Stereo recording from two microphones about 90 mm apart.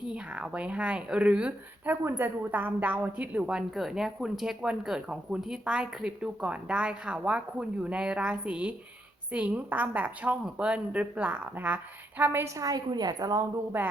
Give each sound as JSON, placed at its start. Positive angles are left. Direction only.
{"t": 0.0, "sound": "a woman's voice", "side_deg": -10}
{"t": 12.5, "sound": "a woman's voice", "side_deg": -40}
{"t": 13.7, "sound": "a woman's voice", "side_deg": -20}